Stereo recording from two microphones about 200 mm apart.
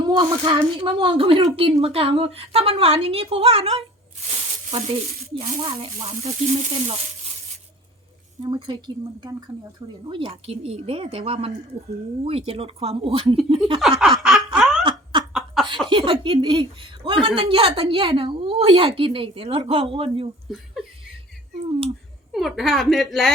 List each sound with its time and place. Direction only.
0.1 s a woman's voice: 20° right (ahead or behind)
8.4 s a woman's voice: 25° right (ahead or behind)
9.8 s a woman's voice: 25° right (ahead or behind)
13.7 s snicker: centre (ahead or behind)
15.3 s a sound: centre (ahead or behind)
15.9 s a woman's voice: 25° right (ahead or behind)
21.7 s a woman's voice: 30° right (ahead or behind)
22.3 s speech: centre (ahead or behind)